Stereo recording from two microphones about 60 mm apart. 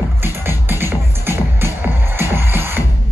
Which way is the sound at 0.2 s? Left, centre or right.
Right.